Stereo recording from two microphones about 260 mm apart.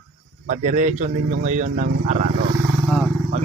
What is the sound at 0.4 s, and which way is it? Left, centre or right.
A man's voice, right.